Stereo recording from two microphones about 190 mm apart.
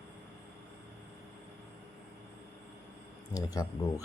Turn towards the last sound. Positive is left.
turn(degrees=20)  # may be behind; listen again after turning